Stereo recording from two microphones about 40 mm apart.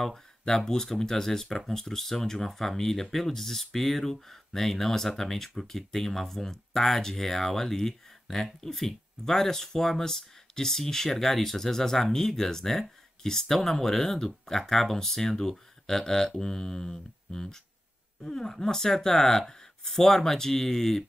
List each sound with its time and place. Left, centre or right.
0.0 s speech: centre